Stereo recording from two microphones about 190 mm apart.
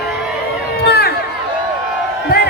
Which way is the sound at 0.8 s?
60° left (ahead or behind).